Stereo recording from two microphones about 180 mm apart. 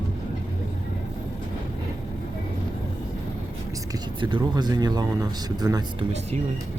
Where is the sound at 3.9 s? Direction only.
25° right (ahead or behind).